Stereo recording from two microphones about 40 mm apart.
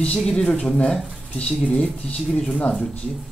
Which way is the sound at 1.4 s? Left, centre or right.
Left.